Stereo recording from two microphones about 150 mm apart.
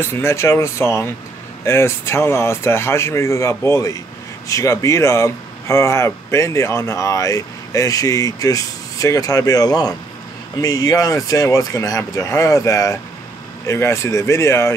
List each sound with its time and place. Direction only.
0.0 s speech: 15° left (ahead or behind)